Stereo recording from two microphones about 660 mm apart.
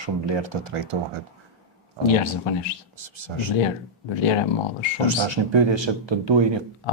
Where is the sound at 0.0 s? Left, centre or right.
Right.